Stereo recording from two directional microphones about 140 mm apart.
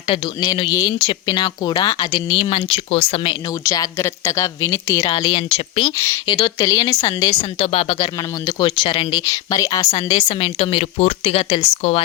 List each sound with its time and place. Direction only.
0.1 s speech: 35° left (ahead or behind)
3.6 s speech: 25° left (ahead or behind)
5.1 s speech: 35° left (ahead or behind)
7.6 s a woman's voice: 45° left (ahead or behind)
7.9 s speech: 30° left (ahead or behind)
9.3 s a woman's voice: 25° left (ahead or behind); by 12.0 s 45° left (ahead or behind)